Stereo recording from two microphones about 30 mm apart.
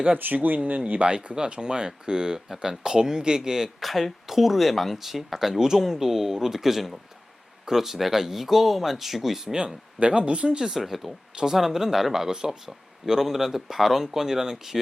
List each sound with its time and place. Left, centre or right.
0.4 s speech: right
1.0 s speech: right
3.8 s speech: centre
9.5 s speech: right
10.1 s speech: right
10.6 s speech: centre